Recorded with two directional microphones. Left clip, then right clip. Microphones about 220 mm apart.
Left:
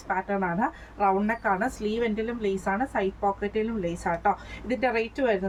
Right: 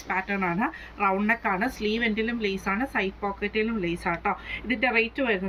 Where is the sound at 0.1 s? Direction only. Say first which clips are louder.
Even; 10° left (ahead or behind).